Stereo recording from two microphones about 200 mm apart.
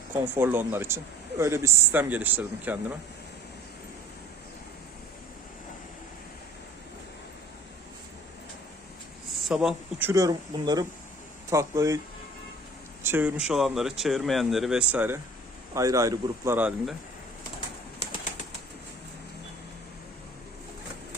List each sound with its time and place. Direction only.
0.1 s speech: 10° right (ahead or behind)
9.5 s speech: 5° right (ahead or behind)
13.0 s speech: 10° right (ahead or behind)